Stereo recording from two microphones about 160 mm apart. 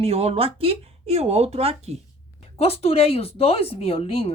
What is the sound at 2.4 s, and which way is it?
A woman's voice, 40° left (ahead or behind).